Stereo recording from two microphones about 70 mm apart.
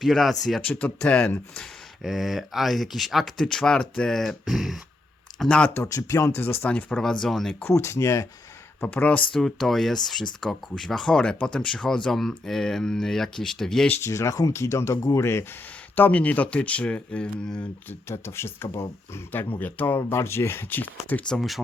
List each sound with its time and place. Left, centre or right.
0.0 s speech: centre
0.6 s speech: left
2.0 s speech: centre
5.5 s speech: centre
5.8 s speech: left
6.3 s speech: left
7.0 s speech: centre
7.6 s speech: left
8.9 s speech: left
9.3 s speech: centre
14.0 s speech: left
16.0 s speech: left
17.8 s speech: left
20.0 s speech: left